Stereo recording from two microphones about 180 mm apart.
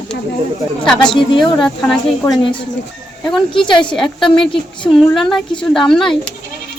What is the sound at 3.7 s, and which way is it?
Speech, 25° left (ahead or behind).